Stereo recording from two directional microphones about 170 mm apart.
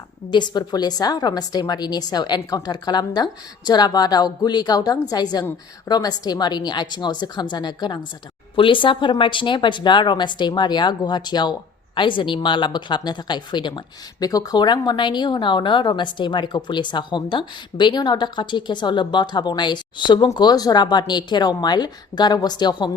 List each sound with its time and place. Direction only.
0.3 s speech: 25° left (ahead or behind)